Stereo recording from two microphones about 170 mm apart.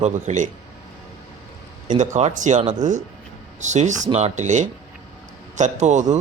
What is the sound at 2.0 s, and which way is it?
Speech, 45° right (ahead or behind).